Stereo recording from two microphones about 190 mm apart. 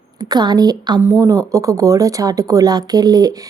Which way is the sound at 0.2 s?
20° right (ahead or behind).